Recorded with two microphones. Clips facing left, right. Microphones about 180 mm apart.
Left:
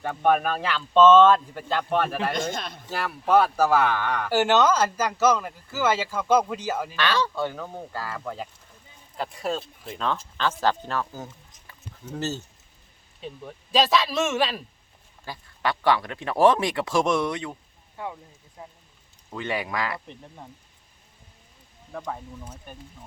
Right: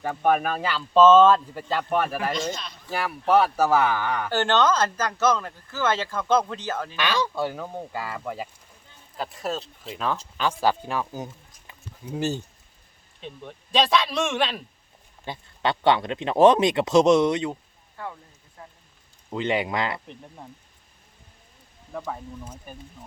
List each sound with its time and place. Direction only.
0.0 s speech: 5° right (ahead or behind)
2.3 s speech: 50° left (ahead or behind)
2.9 s speech: 10° right (ahead or behind)
4.3 s speech: 10° left (ahead or behind)
6.9 s speech: 15° right (ahead or behind)
11.7 s a sound: 15° right (ahead or behind)
13.1 s speech: centre (ahead or behind)
15.2 s speech: 25° right (ahead or behind)
17.9 s speech: 15° left (ahead or behind)
19.3 s speech: 20° right (ahead or behind)
20.1 s speech: centre (ahead or behind)
21.9 s speech: 5° right (ahead or behind)